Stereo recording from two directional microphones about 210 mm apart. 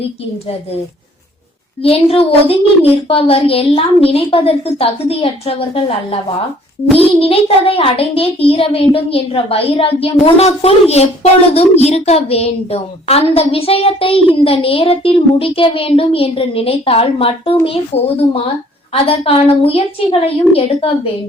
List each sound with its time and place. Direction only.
1.8 s a child's voice: 25° left (ahead or behind)
19.0 s a child's voice: 25° left (ahead or behind)